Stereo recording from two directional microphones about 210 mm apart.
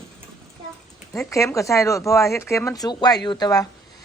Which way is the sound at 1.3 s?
15° left (ahead or behind).